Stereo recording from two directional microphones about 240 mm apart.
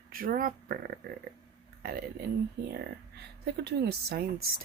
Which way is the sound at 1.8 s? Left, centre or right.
Right.